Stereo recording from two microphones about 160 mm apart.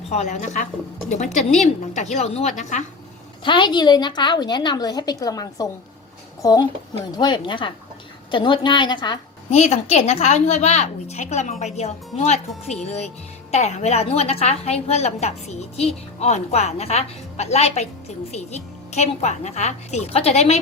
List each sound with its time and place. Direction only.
0.1 s a woman's voice: 45° left (ahead or behind)
3.4 s a woman's voice: 30° left (ahead or behind)
9.5 s a woman's voice: 40° left (ahead or behind)